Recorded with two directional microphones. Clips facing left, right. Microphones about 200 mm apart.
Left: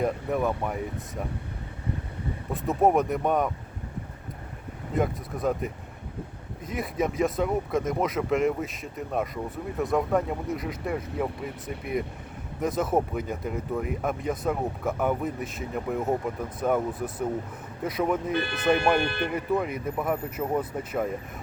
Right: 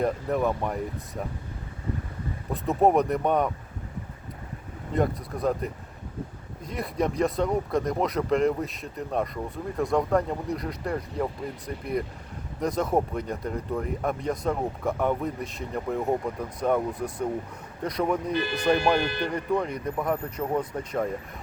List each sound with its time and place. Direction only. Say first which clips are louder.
0.0 s speech: right 1 dB; centre (ahead or behind)
2.5 s speech: right 1 dB; centre (ahead or behind)
4.9 s speech: right 1 dB; centre (ahead or behind)
19.0 s speech: even; 60° left (ahead or behind)
19.3 s speech: even; 5° left (ahead or behind)